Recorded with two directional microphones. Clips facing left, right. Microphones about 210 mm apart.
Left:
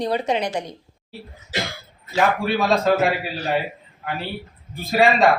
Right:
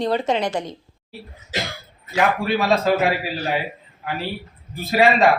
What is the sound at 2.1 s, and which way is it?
Speech, centre (ahead or behind).